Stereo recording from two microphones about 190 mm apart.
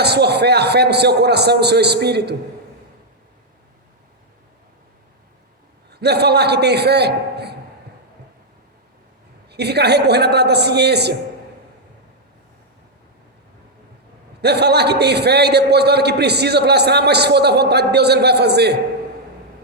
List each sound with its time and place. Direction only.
0.0 s a man's voice: 60° right (ahead or behind)
5.9 s a man's voice: 60° right (ahead or behind)
9.5 s a man's voice: 60° right (ahead or behind)
14.4 s a man's voice: 60° right (ahead or behind)